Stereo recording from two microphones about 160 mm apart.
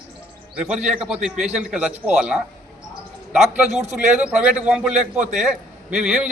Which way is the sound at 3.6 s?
45° right (ahead or behind).